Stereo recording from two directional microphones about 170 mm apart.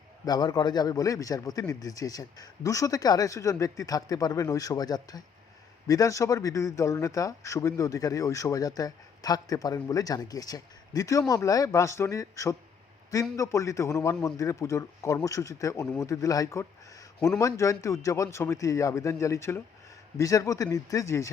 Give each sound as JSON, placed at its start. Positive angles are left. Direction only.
{"t": 0.3, "sound": "a man's voice", "side_deg": 25}